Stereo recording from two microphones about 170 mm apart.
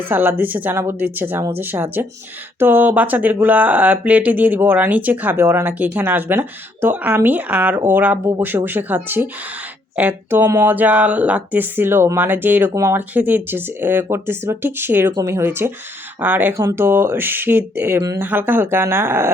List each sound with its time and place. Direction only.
0.1 s speech: 10° right (ahead or behind)